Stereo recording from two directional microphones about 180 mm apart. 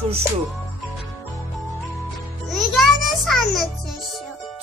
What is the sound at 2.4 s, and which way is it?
Music, centre (ahead or behind).